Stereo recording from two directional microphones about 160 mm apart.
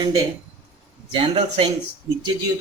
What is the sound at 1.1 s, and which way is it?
Speech, 35° right (ahead or behind).